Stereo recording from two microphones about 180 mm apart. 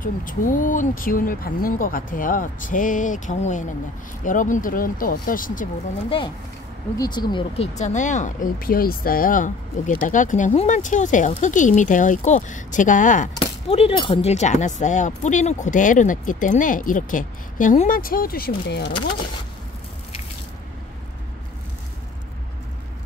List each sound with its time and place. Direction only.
0.0 s speech: 50° left (ahead or behind)
6.0 s speech: 30° left (ahead or behind); by 13.3 s 45° left (ahead or behind)
13.4 s speech: 30° left (ahead or behind); by 18.9 s 65° left (ahead or behind)